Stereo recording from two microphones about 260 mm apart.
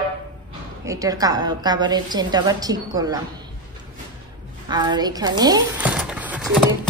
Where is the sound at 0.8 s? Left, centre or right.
Centre.